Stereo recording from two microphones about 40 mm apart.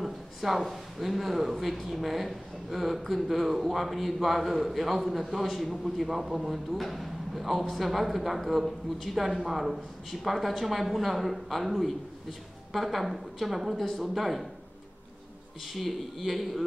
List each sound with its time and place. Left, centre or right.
0.0 s speech: centre
15.6 s speech: centre